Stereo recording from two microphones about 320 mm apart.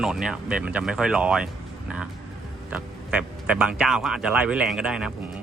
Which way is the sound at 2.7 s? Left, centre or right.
Centre.